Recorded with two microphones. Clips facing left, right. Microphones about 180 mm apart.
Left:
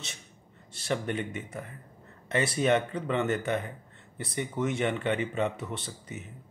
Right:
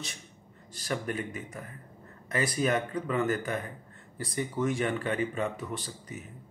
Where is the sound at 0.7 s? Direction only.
25° left (ahead or behind).